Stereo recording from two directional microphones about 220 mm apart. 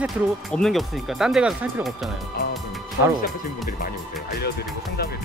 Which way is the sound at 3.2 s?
40° left (ahead or behind).